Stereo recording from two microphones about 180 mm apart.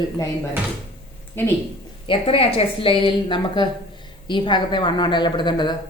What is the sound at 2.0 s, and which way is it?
A woman's voice, 30° left (ahead or behind).